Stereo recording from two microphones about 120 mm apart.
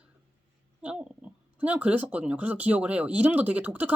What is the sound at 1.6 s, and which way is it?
Speech, 10° right (ahead or behind).